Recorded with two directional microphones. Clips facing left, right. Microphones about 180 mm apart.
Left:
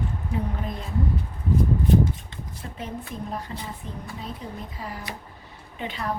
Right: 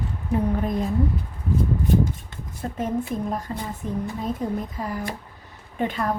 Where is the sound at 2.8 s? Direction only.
45° right (ahead or behind).